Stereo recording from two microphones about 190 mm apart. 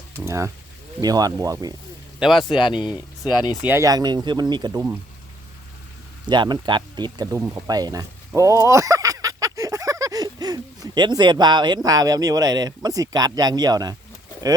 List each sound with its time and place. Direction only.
0.3 s speech: 15° right (ahead or behind)
2.1 s speech: centre (ahead or behind)
2.5 s speech: 25° left (ahead or behind)
3.6 s speech: 10° right (ahead or behind)
6.2 s speech: 25° right (ahead or behind)